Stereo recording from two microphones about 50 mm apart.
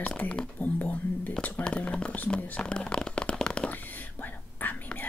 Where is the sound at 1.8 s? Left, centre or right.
Left.